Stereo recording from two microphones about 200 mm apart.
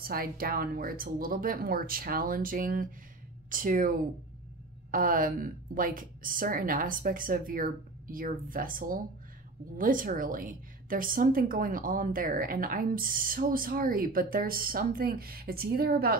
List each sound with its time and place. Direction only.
0.0 s a woman's voice: 50° right (ahead or behind)
4.9 s a woman's voice: 45° right (ahead or behind)